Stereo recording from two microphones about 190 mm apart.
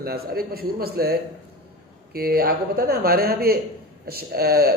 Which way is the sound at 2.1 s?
50° right (ahead or behind).